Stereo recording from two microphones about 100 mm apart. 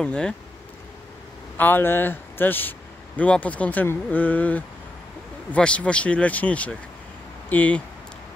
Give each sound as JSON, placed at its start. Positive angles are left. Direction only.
{"t": 0.0, "sound": "speech", "side_deg": 10}
{"t": 1.6, "sound": "speech", "side_deg": 20}